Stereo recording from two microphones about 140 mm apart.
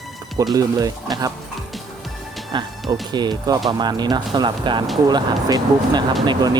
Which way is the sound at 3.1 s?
30° right (ahead or behind).